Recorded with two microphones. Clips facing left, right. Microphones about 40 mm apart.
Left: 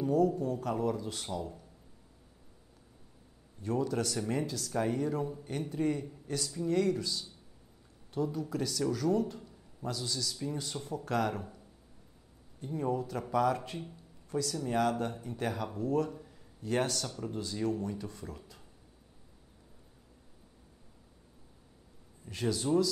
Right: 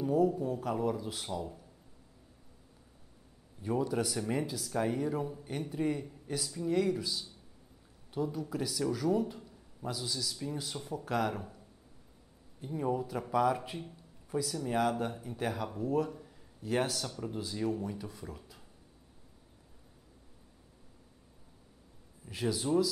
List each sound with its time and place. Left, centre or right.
0.0 s speech: centre
3.6 s speech: centre
22.2 s speech: centre